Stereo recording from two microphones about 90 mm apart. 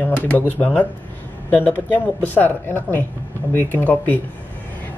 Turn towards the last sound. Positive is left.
turn(degrees=20)  # may be behind; listen again after turning